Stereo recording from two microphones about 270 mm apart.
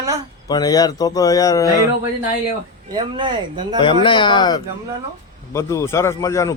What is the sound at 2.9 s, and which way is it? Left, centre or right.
Speech, centre.